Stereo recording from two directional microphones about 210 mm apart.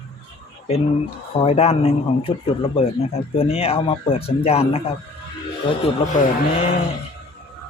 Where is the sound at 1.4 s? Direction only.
30° left (ahead or behind).